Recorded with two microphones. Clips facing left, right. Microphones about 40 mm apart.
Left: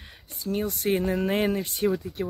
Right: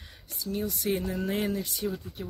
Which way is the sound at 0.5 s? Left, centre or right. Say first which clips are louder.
Left 4 dB; left.